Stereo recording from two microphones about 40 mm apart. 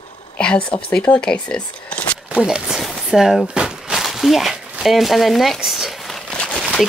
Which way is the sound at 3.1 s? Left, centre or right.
Centre.